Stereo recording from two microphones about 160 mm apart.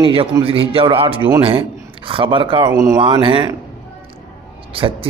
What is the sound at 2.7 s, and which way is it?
Speech, 20° right (ahead or behind).